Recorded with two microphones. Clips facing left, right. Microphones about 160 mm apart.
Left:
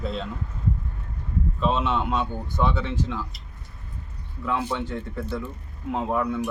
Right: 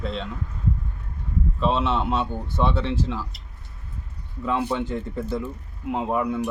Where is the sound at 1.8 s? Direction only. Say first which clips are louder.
Right 1 dB; 30° right (ahead or behind).